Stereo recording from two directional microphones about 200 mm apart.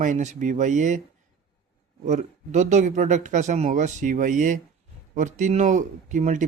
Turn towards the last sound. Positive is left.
turn(degrees=-40)  # may be behind; listen again after turning